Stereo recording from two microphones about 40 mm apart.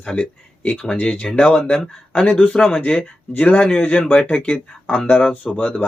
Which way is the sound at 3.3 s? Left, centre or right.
Left.